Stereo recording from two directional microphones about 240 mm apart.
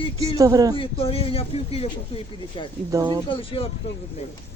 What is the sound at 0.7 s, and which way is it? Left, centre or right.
Speech, left.